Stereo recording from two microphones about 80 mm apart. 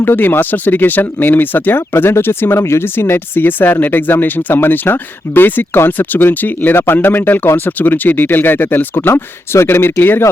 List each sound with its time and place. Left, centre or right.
0.0 s speech: left